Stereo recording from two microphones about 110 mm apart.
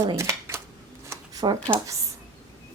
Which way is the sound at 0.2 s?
25° right (ahead or behind).